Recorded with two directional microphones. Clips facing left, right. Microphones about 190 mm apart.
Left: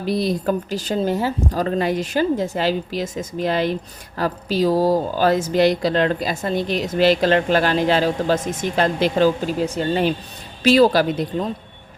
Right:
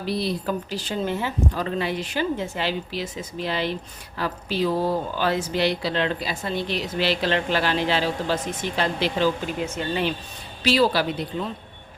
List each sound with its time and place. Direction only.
0.0 s speech: 45° left (ahead or behind)